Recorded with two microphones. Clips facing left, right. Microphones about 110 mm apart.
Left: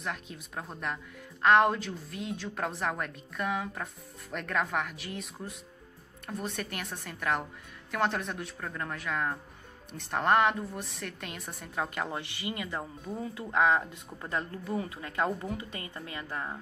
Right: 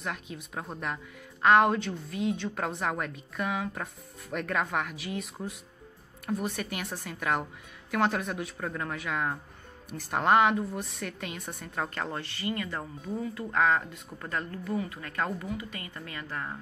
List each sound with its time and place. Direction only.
0.0 s a woman's voice: centre (ahead or behind); by 16.5 s 20° left (ahead or behind)